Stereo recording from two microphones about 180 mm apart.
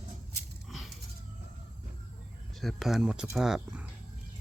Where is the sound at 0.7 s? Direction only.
Centre (ahead or behind).